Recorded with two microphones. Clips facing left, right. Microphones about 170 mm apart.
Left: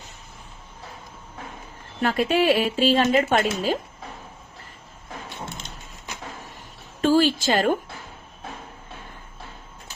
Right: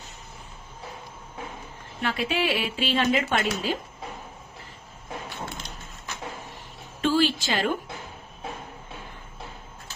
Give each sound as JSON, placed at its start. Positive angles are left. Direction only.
{"t": 2.0, "sound": "speech", "side_deg": 45}
{"t": 7.0, "sound": "speech", "side_deg": 45}